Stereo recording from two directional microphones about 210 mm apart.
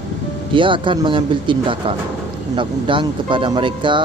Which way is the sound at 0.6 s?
25° right (ahead or behind).